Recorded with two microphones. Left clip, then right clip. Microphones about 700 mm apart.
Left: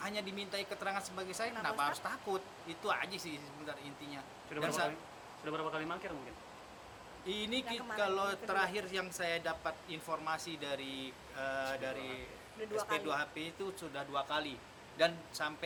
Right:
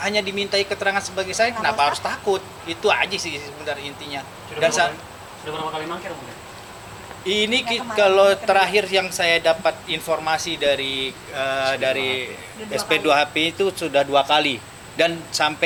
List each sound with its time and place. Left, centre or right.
0.0 s speech: right
7.3 s speech: right